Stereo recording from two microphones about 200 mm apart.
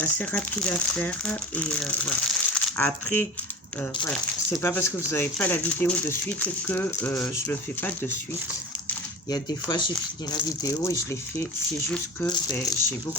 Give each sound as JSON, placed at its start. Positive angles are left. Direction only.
{"t": 0.0, "sound": "speech", "side_deg": 5}
{"t": 4.6, "sound": "speech", "side_deg": 10}
{"t": 9.3, "sound": "speech", "side_deg": 20}